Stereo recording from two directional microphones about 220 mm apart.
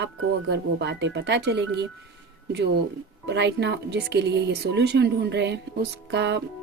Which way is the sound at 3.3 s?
50° right (ahead or behind).